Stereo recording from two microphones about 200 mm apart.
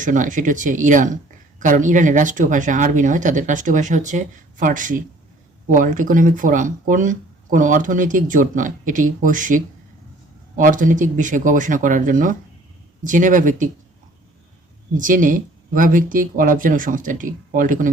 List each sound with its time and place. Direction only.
0.0 s speech: 40° right (ahead or behind)
14.9 s speech: 40° right (ahead or behind)